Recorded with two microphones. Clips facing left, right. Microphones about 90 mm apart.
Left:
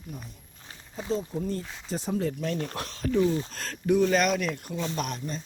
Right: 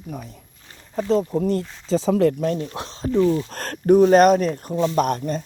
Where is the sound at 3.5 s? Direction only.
55° right (ahead or behind).